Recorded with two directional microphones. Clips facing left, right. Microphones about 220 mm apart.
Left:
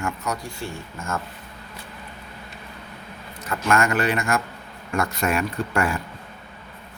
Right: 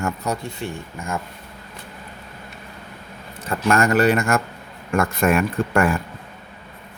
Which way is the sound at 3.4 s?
35° right (ahead or behind).